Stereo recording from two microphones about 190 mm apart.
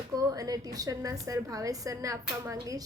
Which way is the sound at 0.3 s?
20° right (ahead or behind).